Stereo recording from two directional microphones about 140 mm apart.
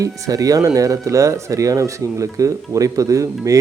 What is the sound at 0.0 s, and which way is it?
Speech, 25° right (ahead or behind).